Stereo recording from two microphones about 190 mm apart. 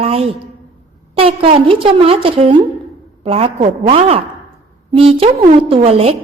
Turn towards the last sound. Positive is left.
turn(degrees=-30)  # may be behind; listen again after turning